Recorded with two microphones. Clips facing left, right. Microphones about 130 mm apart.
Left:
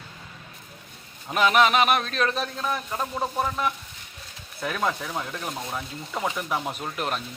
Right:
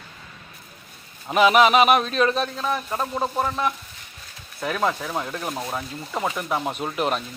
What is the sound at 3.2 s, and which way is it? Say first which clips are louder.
Speech: right 2 dB; 20° right (ahead or behind).